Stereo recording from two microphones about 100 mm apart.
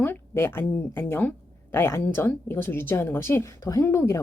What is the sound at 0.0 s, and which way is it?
A woman's voice, 20° left (ahead or behind).